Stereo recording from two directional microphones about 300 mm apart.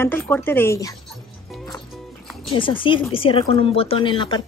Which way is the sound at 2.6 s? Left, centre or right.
Centre.